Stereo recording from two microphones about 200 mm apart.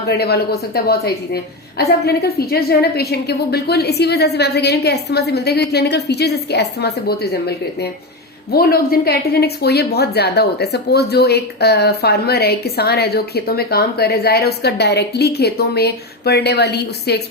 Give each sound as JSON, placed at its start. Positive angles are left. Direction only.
{"t": 0.1, "sound": "a woman's voice", "side_deg": 55}